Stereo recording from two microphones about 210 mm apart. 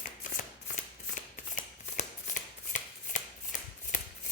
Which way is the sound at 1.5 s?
35° left (ahead or behind).